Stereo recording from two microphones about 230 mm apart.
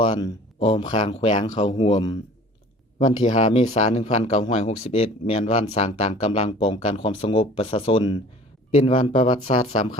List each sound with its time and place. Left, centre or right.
0.0 s speech: centre
3.2 s speech: left